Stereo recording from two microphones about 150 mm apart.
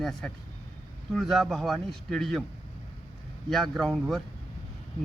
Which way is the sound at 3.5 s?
Centre (ahead or behind).